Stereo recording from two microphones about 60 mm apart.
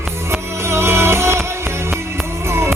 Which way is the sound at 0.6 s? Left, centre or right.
Right.